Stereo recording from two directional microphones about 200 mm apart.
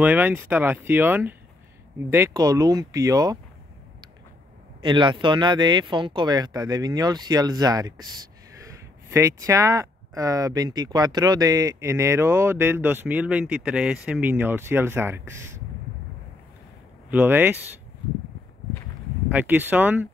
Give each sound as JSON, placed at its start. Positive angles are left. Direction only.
{"t": 0.0, "sound": "speech", "side_deg": -10}
{"t": 4.8, "sound": "speech", "side_deg": -25}
{"t": 17.1, "sound": "speech", "side_deg": -10}
{"t": 19.2, "sound": "speech", "side_deg": -10}